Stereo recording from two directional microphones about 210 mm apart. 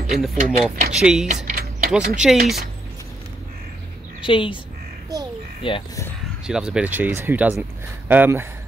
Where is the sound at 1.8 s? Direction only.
5° right (ahead or behind).